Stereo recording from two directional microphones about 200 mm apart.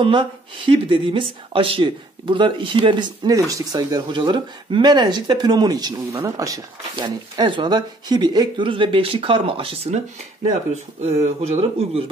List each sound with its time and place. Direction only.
0.0 s speech: 25° right (ahead or behind)